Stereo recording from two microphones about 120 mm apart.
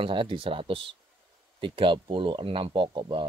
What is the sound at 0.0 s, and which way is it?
Speech, 45° right (ahead or behind).